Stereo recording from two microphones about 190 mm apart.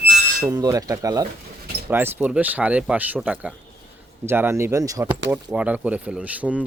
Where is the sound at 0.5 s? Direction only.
20° right (ahead or behind).